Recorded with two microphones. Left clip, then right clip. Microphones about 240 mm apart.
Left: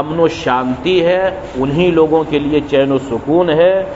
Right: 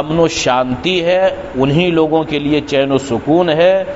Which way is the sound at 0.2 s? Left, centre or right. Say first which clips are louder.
Right 1 dB; right.